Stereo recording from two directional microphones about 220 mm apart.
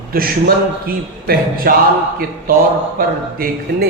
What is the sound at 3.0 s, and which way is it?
Speech, 40° right (ahead or behind).